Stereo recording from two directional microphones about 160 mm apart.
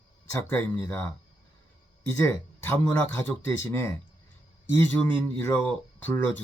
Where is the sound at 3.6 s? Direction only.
15° left (ahead or behind).